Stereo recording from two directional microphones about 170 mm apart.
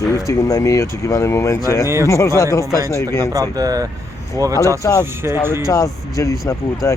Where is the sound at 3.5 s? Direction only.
20° right (ahead or behind).